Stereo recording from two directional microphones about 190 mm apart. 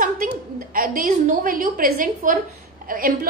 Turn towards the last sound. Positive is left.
turn(degrees=-50)  # may be behind; listen again after turning